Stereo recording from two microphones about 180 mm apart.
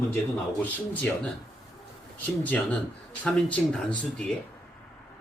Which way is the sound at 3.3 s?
5° left (ahead or behind).